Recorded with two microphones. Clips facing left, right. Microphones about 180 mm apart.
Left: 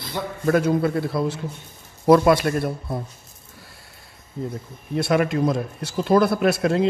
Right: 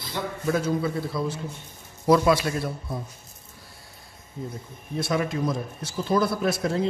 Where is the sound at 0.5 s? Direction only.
60° left (ahead or behind).